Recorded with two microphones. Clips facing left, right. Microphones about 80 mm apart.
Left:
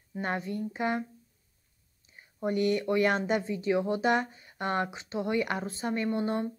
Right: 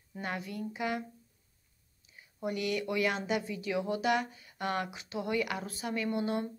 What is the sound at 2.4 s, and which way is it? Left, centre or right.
Speech, left.